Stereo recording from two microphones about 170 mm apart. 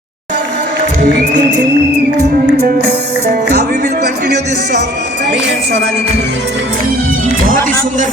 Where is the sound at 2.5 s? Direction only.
75° right (ahead or behind); by 5.8 s 90° right.